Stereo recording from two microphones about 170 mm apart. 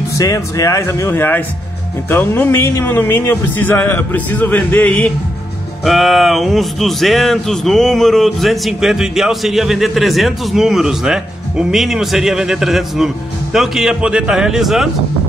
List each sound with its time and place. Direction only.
0.1 s speech: 20° left (ahead or behind); by 14.9 s centre (ahead or behind)